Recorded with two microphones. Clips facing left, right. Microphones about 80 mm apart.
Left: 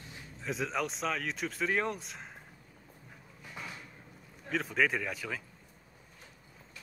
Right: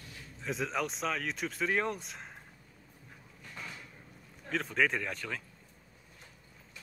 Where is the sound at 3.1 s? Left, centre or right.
Centre.